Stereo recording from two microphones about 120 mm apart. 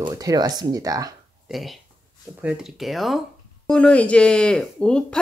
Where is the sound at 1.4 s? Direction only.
Centre (ahead or behind).